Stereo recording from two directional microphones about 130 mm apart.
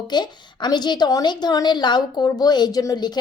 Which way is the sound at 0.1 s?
35° left (ahead or behind).